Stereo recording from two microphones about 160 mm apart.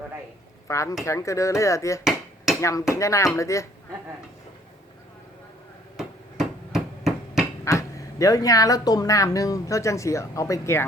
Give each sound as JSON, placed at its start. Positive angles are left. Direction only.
{"t": 0.7, "sound": "speech", "side_deg": 20}
{"t": 2.0, "sound": "hammer", "side_deg": 0}
{"t": 2.6, "sound": "speech", "side_deg": 20}
{"t": 6.0, "sound": "hammer", "side_deg": -5}
{"t": 7.6, "sound": "speech", "side_deg": 20}